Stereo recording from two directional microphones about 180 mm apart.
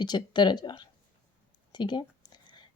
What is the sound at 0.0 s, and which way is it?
Speech, 25° left (ahead or behind).